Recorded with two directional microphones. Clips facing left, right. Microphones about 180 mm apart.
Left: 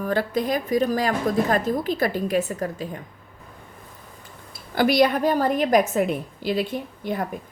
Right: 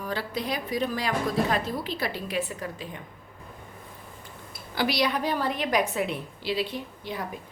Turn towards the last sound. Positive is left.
turn(degrees=50)  # may be behind; listen again after turning